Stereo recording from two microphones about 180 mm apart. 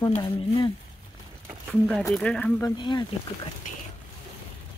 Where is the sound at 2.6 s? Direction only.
25° left (ahead or behind).